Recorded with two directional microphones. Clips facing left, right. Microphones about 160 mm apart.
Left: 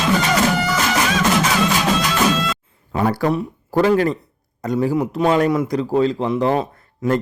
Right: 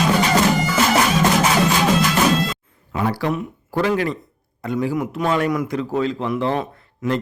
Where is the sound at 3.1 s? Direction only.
45° left (ahead or behind).